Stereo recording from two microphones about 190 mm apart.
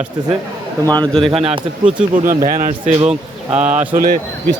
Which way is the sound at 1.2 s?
30° right (ahead or behind).